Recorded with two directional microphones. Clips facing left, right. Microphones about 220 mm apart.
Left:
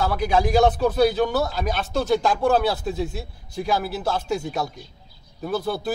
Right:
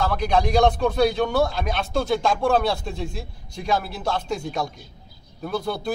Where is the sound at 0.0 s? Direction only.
5° left (ahead or behind).